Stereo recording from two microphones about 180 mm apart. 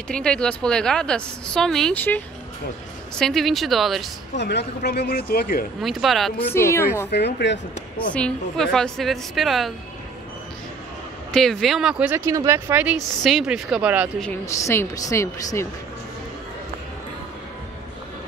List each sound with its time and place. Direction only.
0.1 s a woman's voice: 5° left (ahead or behind)
4.4 s speech: 70° left (ahead or behind)
5.8 s a woman's voice: centre (ahead or behind)
6.5 s a woman's voice: 15° left (ahead or behind)
7.1 s speech: 70° left (ahead or behind)
8.1 s a woman's voice: 5° left (ahead or behind)
11.3 s speech: centre (ahead or behind)
13.2 s a woman's voice: centre (ahead or behind)
14.4 s a woman's voice: 15° left (ahead or behind)